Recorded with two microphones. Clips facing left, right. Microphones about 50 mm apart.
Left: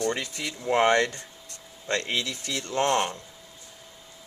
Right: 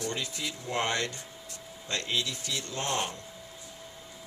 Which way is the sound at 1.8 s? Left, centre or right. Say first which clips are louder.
Left 4 dB; left.